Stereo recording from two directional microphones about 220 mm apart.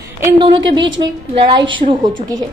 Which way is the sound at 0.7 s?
55° right (ahead or behind).